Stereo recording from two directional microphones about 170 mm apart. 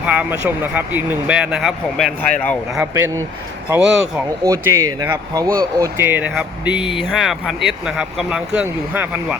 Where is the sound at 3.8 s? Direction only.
5° right (ahead or behind).